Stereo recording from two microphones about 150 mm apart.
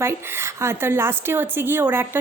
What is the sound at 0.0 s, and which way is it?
A woman's voice, 15° right (ahead or behind).